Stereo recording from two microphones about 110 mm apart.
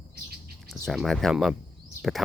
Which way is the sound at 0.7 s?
Centre (ahead or behind).